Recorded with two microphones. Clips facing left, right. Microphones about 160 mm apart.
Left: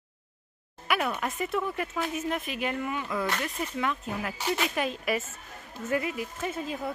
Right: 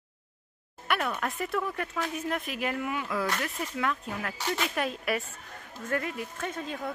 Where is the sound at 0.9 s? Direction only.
5° left (ahead or behind).